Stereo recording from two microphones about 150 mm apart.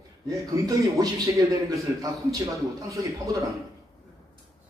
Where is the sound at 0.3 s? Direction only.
20° right (ahead or behind).